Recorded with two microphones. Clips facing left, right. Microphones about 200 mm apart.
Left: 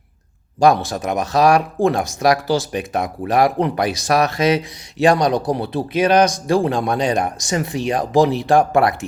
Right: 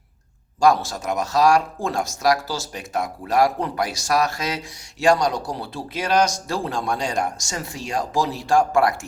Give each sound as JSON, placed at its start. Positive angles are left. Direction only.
{"t": 0.6, "sound": "speech", "side_deg": 20}